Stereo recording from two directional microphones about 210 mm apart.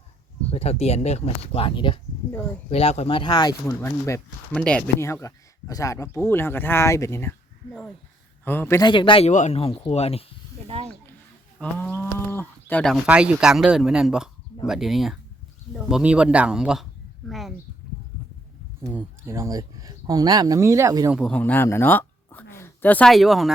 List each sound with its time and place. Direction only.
0.5 s speech: 30° left (ahead or behind)
10.7 s speech: 30° right (ahead or behind)
11.6 s speech: 10° left (ahead or behind)
13.1 s speech: 5° right (ahead or behind)
18.9 s speech: 10° right (ahead or behind)
21.2 s speech: 5° left (ahead or behind)